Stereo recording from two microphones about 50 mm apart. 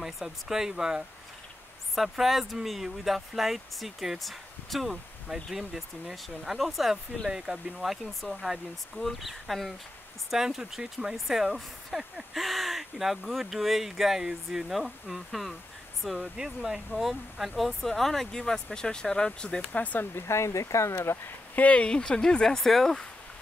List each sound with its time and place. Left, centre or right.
0.0 s speech: centre
7.2 s speech: centre
19.7 s speech: left
20.2 s speech: left
20.9 s speech: left
21.5 s speech: left; by 23.0 s centre